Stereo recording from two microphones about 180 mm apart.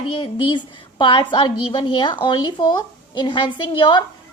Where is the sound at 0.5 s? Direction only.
25° left (ahead or behind).